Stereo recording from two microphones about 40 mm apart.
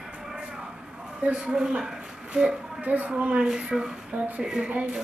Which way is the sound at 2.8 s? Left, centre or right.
Right.